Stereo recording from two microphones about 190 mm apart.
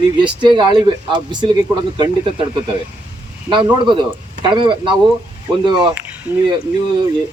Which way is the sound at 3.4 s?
25° right (ahead or behind).